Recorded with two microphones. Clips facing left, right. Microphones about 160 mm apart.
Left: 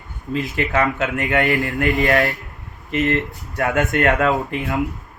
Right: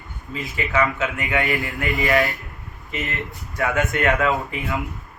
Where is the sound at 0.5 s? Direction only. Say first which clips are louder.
Even; 55° left (ahead or behind).